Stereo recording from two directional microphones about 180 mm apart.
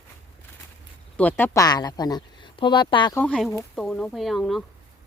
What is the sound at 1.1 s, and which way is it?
Speech, 10° left (ahead or behind).